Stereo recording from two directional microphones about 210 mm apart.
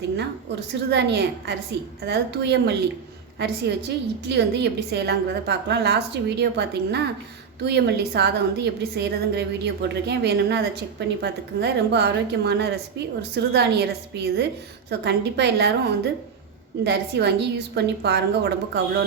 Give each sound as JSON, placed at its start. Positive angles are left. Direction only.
{"t": 0.7, "sound": "a woman's voice", "side_deg": -55}
{"t": 16.8, "sound": "a woman's voice", "side_deg": -50}